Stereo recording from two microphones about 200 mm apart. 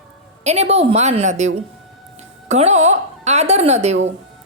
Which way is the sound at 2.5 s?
35° right (ahead or behind).